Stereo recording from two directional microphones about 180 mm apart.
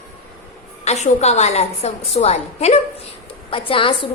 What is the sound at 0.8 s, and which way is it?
A woman's voice, 40° left (ahead or behind).